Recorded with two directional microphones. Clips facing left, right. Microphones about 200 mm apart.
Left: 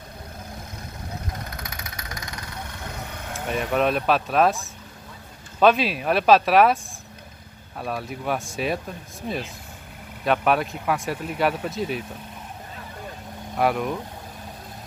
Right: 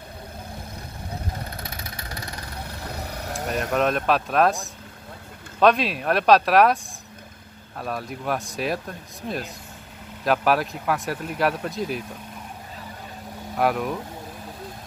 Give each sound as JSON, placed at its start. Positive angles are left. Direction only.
{"t": 1.6, "sound": "vehicle", "side_deg": -30}
{"t": 3.3, "sound": "a man's voice", "side_deg": 0}
{"t": 5.6, "sound": "a man's voice", "side_deg": 0}
{"t": 7.8, "sound": "a man's voice", "side_deg": 0}
{"t": 13.6, "sound": "a man's voice", "side_deg": 0}